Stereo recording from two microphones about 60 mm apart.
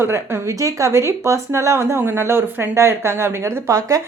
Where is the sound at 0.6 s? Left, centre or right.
Right.